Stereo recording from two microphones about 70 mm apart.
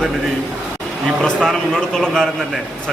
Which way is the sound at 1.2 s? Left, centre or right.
Centre.